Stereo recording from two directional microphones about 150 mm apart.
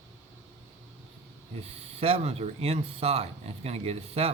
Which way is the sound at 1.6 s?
40° right (ahead or behind).